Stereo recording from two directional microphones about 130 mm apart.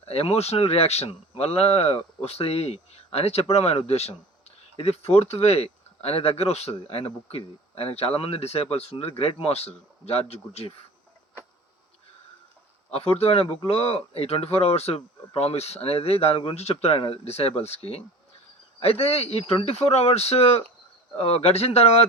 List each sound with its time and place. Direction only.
0.0 s speech: 50° left (ahead or behind)
12.9 s speech: 50° left (ahead or behind)